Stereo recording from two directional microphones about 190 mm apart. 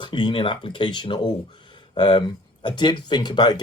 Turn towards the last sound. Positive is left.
turn(degrees=20)  # may be behind; listen again after turning